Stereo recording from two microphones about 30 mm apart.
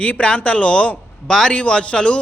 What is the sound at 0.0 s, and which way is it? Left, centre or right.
Speech, left.